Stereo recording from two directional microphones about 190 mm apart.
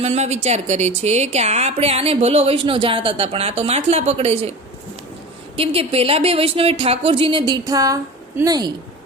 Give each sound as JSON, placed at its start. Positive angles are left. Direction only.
{"t": 0.0, "sound": "a woman's voice", "side_deg": -35}
{"t": 5.5, "sound": "a woman's voice", "side_deg": -30}